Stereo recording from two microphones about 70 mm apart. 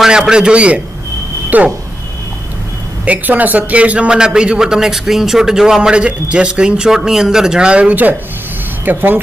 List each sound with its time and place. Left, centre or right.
0.3 s a man's voice: centre
3.1 s a man's voice: right